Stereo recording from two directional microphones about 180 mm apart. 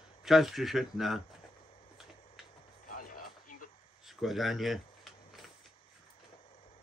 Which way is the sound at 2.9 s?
50° left (ahead or behind).